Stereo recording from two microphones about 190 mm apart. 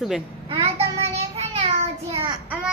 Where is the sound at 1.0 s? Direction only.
30° right (ahead or behind).